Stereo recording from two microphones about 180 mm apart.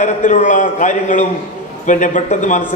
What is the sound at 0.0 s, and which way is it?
A man's voice, 45° left (ahead or behind).